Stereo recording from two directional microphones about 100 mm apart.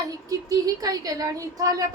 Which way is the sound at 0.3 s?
35° right (ahead or behind).